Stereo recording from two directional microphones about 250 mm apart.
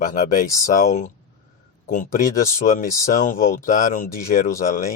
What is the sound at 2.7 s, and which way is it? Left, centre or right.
Speech, left.